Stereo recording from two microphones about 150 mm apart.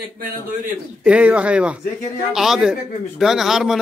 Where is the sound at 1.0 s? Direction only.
10° right (ahead or behind).